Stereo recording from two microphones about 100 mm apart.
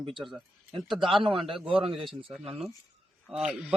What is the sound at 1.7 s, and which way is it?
Speech, 65° right (ahead or behind).